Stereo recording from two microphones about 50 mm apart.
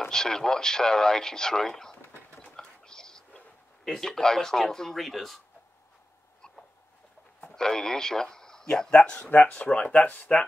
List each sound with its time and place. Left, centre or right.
0.1 s speech: centre
2.3 s a sound: left
2.8 s a sound: centre
5.0 s speech: centre
7.5 s speech: centre
8.9 s speech: left